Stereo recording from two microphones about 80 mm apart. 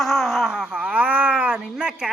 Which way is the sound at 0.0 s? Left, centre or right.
Centre.